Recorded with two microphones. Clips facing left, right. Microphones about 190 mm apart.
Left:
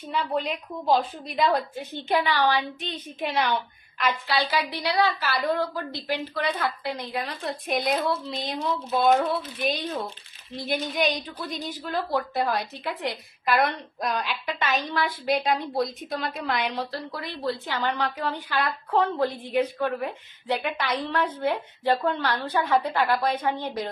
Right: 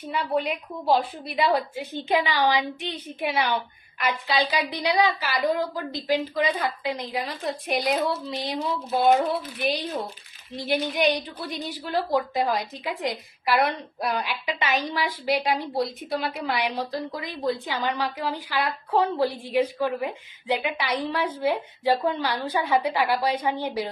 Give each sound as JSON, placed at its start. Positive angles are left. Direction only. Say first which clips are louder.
{"t": 0.1, "sound": "a woman's voice", "louder": "right 1 dB", "side_deg": -10}
{"t": 4.0, "sound": "a woman's voice", "louder": "right 1 dB", "side_deg": -15}
{"t": 10.7, "sound": "a woman's voice", "louder": "right 3 dB", "side_deg": -10}